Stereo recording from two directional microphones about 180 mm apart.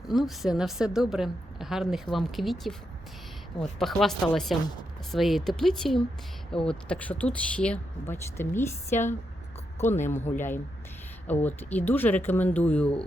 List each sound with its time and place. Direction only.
0.1 s a woman's voice: centre (ahead or behind)
8.9 s speech: 45° left (ahead or behind)
10.2 s speech: 40° left (ahead or behind)
11.3 s speech: 10° left (ahead or behind)